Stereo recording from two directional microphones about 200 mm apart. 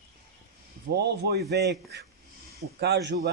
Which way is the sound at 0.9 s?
55° right (ahead or behind).